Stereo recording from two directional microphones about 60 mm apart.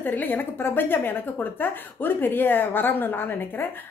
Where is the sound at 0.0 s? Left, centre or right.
Left.